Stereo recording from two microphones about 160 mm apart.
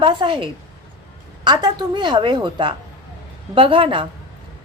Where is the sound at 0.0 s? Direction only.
30° right (ahead or behind).